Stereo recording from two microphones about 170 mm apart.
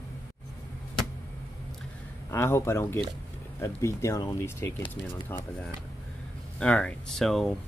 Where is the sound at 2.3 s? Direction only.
15° left (ahead or behind).